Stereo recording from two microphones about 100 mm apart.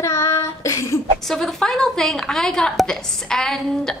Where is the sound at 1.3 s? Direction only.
5° left (ahead or behind).